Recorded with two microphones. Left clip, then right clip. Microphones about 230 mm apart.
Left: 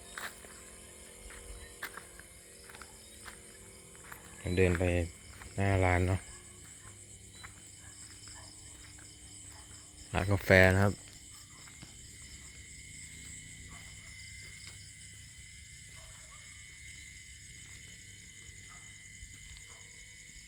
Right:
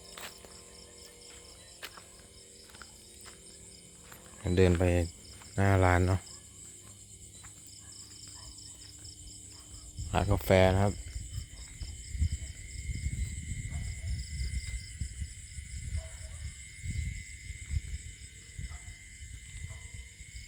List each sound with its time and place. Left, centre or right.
4.4 s speech: right
10.1 s speech: centre